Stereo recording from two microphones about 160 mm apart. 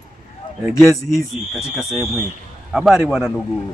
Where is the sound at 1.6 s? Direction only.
5° right (ahead or behind).